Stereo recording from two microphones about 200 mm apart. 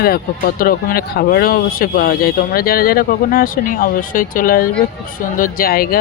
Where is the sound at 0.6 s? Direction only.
45° left (ahead or behind).